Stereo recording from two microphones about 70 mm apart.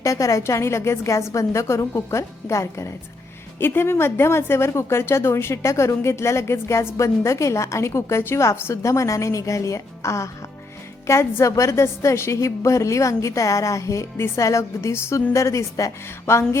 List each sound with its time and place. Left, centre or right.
0.0 s a woman's voice: left
3.6 s a woman's voice: left
16.2 s a woman's voice: left